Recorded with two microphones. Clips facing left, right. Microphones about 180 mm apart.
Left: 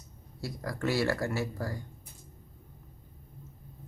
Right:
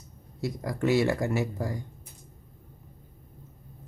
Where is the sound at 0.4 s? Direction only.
20° right (ahead or behind).